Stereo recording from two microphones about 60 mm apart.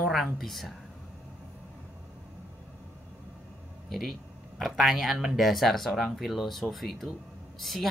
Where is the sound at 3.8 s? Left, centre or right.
Centre.